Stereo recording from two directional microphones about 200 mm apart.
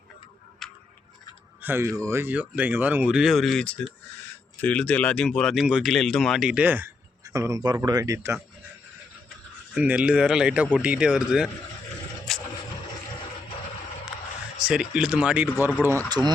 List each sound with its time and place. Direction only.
0.6 s tick-tock: centre (ahead or behind)
1.6 s speech: 10° right (ahead or behind)
9.7 s speech: 5° right (ahead or behind)
14.6 s speech: 5° right (ahead or behind); by 16.3 s 20° right (ahead or behind)